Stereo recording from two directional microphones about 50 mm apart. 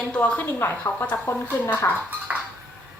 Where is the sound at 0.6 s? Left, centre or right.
Left.